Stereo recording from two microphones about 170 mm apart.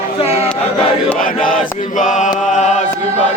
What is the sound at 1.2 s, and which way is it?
Chant, 55° left (ahead or behind).